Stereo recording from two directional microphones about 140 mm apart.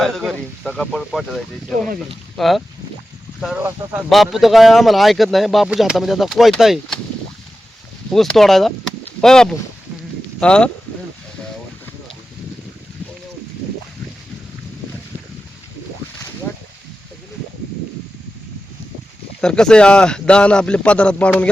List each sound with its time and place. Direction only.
0.0 s speech: centre (ahead or behind)
2.3 s speech: centre (ahead or behind)
3.6 s speech: 15° right (ahead or behind)
4.1 s speech: centre (ahead or behind)
8.1 s speech: centre (ahead or behind)
19.4 s speech: 5° left (ahead or behind)